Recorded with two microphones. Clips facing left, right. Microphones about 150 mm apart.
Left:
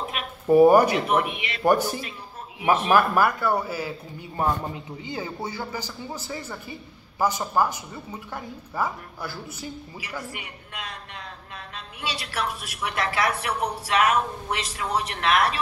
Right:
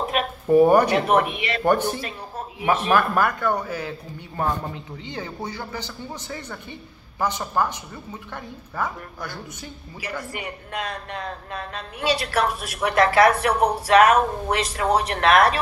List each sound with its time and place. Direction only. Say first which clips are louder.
0.0 s a sound: right 8 dB; 45° right (ahead or behind)
0.5 s a woman's voice: even; 10° left (ahead or behind)
0.9 s speech: right 4 dB; 50° right (ahead or behind)
1.9 s speech: right 3 dB; 60° right (ahead or behind)
2.9 s a woman's voice: left 1 dB; 10° left (ahead or behind)
5.0 s a woman's voice: even; 10° left (ahead or behind)
10.3 s speech: right 8 dB; 45° right (ahead or behind)